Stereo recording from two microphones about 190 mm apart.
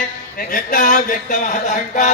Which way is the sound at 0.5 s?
45° left (ahead or behind).